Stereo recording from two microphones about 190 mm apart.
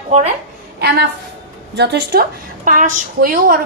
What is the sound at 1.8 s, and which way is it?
A woman's voice, 55° right (ahead or behind).